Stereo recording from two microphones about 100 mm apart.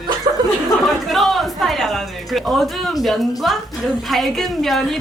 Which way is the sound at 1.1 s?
Centre (ahead or behind).